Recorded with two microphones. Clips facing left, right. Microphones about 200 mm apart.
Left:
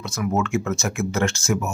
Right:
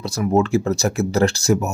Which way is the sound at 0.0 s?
35° right (ahead or behind).